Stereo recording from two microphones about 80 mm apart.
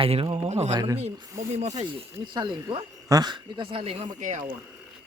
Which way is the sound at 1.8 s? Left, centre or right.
Right.